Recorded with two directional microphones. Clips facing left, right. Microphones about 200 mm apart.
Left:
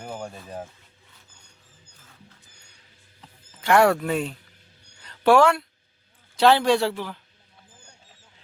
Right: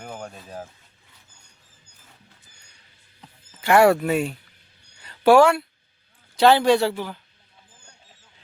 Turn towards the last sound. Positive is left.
turn(degrees=0)  # may be behind; listen again after turning